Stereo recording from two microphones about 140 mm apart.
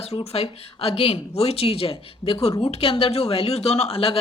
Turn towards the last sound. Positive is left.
turn(degrees=45)  # may be behind; listen again after turning